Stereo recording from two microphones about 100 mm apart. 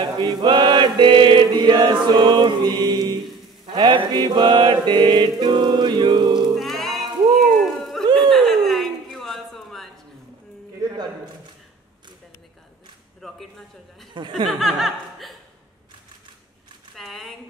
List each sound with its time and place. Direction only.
0.0 s chant: 45° right (ahead or behind)
3.7 s mantra: 45° right (ahead or behind)
6.5 s music: centre (ahead or behind)
7.3 s a sound: centre (ahead or behind)
13.2 s a man's voice: 5° left (ahead or behind)
14.5 s chuckle: centre (ahead or behind)
16.9 s a sound: centre (ahead or behind)